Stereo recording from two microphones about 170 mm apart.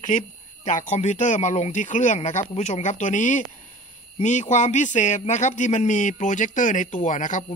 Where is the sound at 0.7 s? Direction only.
45° left (ahead or behind).